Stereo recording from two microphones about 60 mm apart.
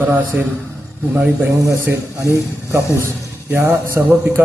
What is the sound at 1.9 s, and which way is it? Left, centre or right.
Speech, right.